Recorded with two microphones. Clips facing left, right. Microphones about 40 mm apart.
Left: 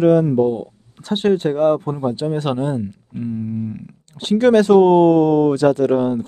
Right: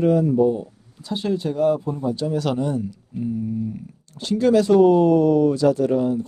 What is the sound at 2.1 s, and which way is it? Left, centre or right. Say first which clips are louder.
Speech: left 2 dB; left.